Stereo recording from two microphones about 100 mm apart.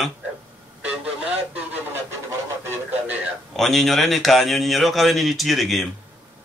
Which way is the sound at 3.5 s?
5° left (ahead or behind).